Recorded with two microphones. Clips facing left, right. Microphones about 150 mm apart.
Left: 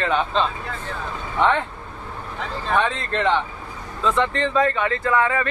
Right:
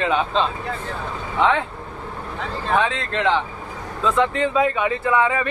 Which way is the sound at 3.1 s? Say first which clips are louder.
Even; centre (ahead or behind).